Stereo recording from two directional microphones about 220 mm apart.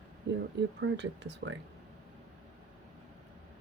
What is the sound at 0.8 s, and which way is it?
Speech, 55° right (ahead or behind).